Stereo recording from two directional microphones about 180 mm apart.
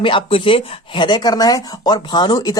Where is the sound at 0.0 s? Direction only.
30° left (ahead or behind).